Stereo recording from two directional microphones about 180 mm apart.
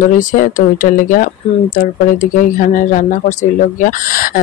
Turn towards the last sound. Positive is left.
turn(degrees=50)  # may be behind; listen again after turning